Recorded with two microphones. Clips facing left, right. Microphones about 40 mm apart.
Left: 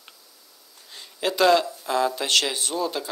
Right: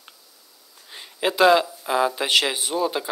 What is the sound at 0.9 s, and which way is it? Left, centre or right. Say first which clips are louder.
Speech: right 3 dB; centre.